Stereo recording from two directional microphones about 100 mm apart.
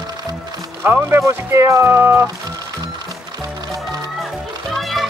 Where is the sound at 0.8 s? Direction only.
25° right (ahead or behind).